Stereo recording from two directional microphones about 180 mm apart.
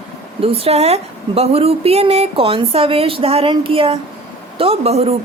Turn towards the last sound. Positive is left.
turn(degrees=-35)  # may be behind; listen again after turning